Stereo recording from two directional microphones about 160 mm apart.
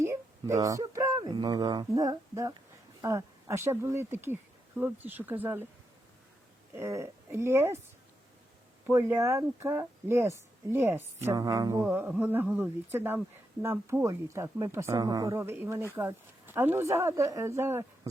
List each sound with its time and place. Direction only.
0.0 s speech: 15° right (ahead or behind)
6.7 s speech: 15° right (ahead or behind)
8.9 s speech: 20° right (ahead or behind)